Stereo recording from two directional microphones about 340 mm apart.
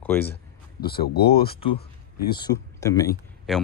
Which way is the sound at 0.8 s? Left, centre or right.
Left.